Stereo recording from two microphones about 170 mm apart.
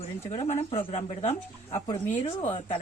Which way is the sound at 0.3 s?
40° left (ahead or behind).